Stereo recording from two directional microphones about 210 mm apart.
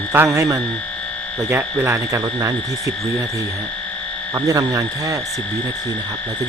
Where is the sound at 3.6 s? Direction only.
5° left (ahead or behind).